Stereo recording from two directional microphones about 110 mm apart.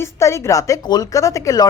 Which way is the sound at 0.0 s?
25° left (ahead or behind).